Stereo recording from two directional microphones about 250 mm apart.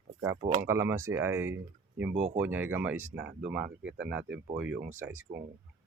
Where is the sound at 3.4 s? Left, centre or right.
Centre.